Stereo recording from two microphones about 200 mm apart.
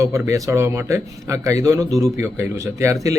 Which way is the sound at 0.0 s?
15° right (ahead or behind).